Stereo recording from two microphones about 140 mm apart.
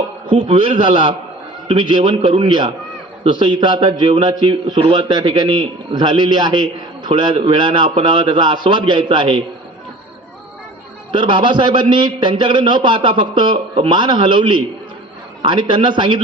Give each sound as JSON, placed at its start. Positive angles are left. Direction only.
{"t": 0.3, "sound": "a man's voice", "side_deg": -40}
{"t": 11.1, "sound": "a man's voice", "side_deg": -35}